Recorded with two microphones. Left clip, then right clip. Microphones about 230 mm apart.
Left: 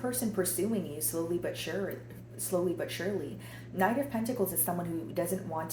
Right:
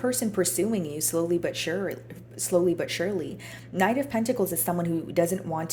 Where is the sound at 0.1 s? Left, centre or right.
Right.